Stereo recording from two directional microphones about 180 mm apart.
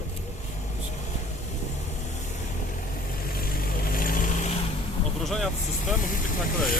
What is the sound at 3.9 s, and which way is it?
Vehicle, 50° left (ahead or behind).